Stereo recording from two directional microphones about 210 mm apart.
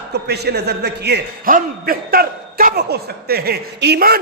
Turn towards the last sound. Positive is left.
turn(degrees=-45)  # may be behind; listen again after turning